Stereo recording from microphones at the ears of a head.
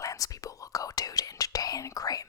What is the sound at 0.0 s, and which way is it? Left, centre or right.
Whispering, left.